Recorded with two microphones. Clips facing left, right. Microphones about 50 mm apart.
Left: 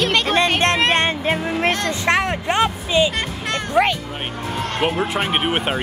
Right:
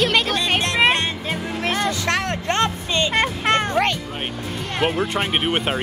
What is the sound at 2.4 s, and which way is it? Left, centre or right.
Speech, centre.